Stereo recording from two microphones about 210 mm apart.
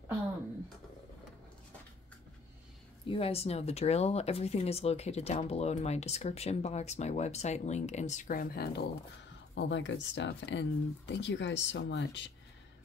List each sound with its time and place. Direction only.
3.1 s speech: 30° left (ahead or behind); by 8.8 s 45° left (ahead or behind)
9.6 s speech: 60° left (ahead or behind)